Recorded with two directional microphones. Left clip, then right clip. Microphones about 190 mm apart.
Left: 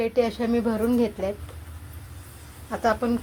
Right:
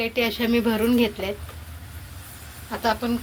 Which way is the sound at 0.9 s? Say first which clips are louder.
Right 2 dB; 15° left (ahead or behind).